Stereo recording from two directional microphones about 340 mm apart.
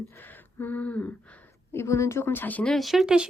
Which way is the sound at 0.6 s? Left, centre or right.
Centre.